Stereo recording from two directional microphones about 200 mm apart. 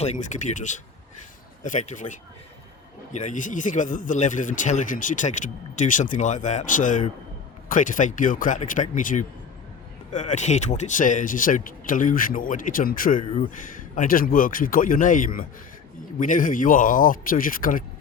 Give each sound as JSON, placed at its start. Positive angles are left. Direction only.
{"t": 0.0, "sound": "speech", "side_deg": 35}